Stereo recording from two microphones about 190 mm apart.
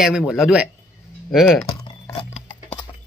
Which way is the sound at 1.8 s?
20° left (ahead or behind).